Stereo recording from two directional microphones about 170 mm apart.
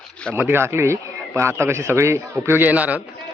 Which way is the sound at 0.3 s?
15° right (ahead or behind).